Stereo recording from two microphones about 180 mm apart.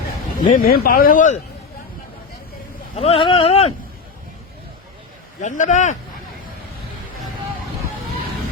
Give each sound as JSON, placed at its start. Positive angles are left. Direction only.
{"t": 0.3, "sound": "a man's voice", "side_deg": 50}
{"t": 2.9, "sound": "speech", "side_deg": 35}
{"t": 5.4, "sound": "a man's voice", "side_deg": 45}